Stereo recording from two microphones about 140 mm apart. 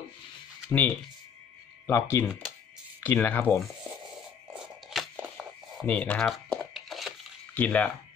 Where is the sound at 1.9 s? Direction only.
15° left (ahead or behind).